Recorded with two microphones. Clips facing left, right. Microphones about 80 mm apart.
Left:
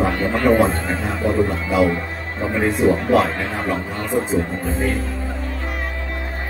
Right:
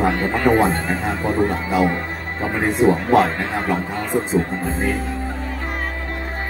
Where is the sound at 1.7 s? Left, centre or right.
Right.